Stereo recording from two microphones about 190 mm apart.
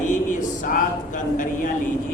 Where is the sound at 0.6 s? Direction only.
45° left (ahead or behind).